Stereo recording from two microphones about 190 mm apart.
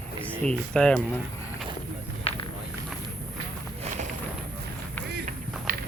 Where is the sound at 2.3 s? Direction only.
30° left (ahead or behind).